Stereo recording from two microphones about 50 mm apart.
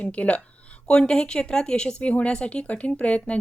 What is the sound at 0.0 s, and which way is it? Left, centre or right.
Speech, left.